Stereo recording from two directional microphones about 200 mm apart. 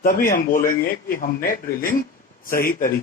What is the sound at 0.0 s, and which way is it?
Speech, 45° left (ahead or behind).